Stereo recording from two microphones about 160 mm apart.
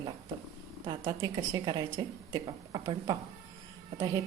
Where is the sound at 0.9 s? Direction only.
25° right (ahead or behind).